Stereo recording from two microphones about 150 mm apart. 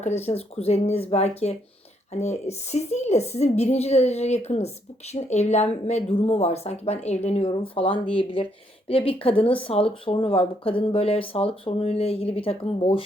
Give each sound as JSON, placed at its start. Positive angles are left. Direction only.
{"t": 0.2, "sound": "speech", "side_deg": 45}